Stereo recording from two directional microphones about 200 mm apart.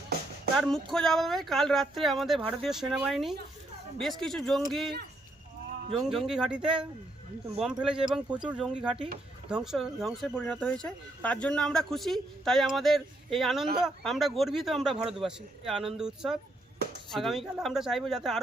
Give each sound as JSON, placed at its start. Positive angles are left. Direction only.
{"t": 0.5, "sound": "speech", "side_deg": 0}
{"t": 5.9, "sound": "speech", "side_deg": 0}